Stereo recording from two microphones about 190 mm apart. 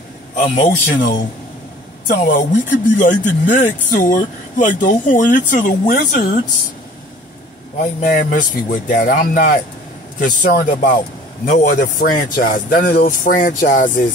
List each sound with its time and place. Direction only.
0.4 s speech: 40° left (ahead or behind)
7.8 s speech: 45° left (ahead or behind)